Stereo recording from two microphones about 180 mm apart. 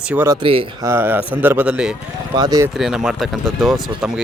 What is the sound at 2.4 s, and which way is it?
Speech, 20° right (ahead or behind).